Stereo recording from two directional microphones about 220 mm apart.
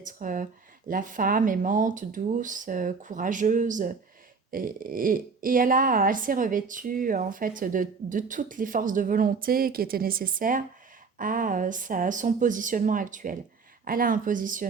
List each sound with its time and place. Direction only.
0.0 s speech: 35° right (ahead or behind)